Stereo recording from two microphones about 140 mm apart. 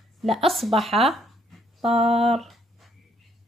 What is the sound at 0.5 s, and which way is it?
Speech, centre (ahead or behind).